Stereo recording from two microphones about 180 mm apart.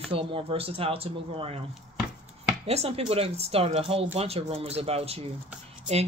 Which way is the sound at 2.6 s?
35° right (ahead or behind).